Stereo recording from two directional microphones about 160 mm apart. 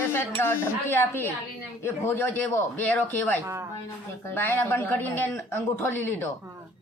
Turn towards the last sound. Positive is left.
turn(degrees=15)  # may be behind; listen again after turning